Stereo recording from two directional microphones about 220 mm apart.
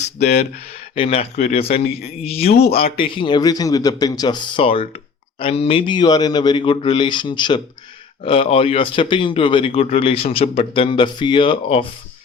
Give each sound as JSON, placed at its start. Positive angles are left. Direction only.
{"t": 0.2, "sound": "speech", "side_deg": 45}
{"t": 0.9, "sound": "speech", "side_deg": 25}
{"t": 2.5, "sound": "speech", "side_deg": 45}
{"t": 2.9, "sound": "speech", "side_deg": 25}